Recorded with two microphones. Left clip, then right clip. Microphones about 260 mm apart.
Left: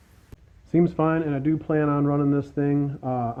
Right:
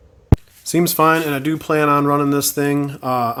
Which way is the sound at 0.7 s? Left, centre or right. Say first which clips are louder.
Right 8 dB; centre.